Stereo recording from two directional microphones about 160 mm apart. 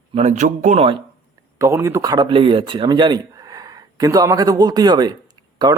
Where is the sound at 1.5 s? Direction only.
20° right (ahead or behind).